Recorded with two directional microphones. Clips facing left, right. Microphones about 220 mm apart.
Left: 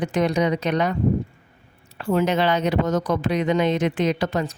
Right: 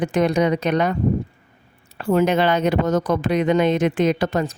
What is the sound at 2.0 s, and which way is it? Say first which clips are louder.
Speech: right 3 dB; 45° right (ahead or behind).